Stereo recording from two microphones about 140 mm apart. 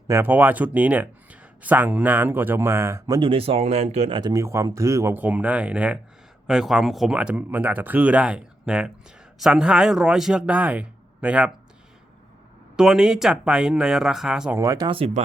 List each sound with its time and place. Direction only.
0.1 s speech: 15° right (ahead or behind)
3.2 s speech: 40° right (ahead or behind)
4.2 s speech: 25° right (ahead or behind); by 11.5 s 10° right (ahead or behind)
12.7 s speech: 5° right (ahead or behind)
14.6 s speech: 25° right (ahead or behind)
14.8 s speech: 45° right (ahead or behind)